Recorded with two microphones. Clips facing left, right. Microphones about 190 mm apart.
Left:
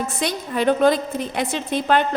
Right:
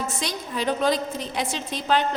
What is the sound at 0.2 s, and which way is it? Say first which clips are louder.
A woman's voice: left 6 dB; 55° left (ahead or behind).